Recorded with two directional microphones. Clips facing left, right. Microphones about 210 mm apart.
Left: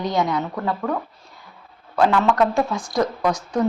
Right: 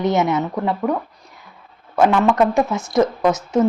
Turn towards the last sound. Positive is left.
turn(degrees=-25)  # may be behind; listen again after turning